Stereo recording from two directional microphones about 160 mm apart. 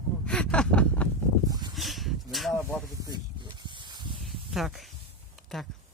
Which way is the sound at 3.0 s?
25° right (ahead or behind).